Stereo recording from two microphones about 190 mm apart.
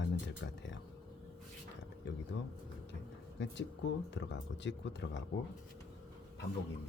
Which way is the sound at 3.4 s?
70° left (ahead or behind).